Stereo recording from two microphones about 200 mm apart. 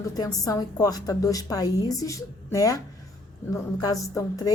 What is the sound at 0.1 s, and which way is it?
A woman's voice, 20° left (ahead or behind).